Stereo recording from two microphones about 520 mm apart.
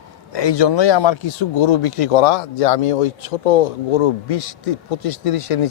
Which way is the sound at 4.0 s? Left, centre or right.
Left.